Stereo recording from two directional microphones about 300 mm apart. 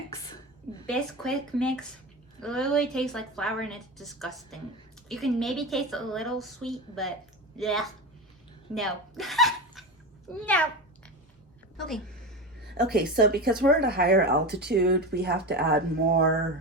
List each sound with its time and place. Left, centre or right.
0.9 s a woman's voice: centre
8.7 s a sound: centre
11.8 s a woman's voice: centre
12.9 s speech: right